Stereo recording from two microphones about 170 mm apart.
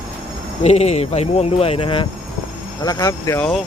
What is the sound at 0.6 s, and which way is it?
Speech, 40° left (ahead or behind).